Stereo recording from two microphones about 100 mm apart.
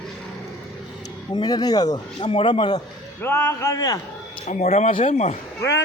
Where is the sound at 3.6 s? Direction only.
35° left (ahead or behind).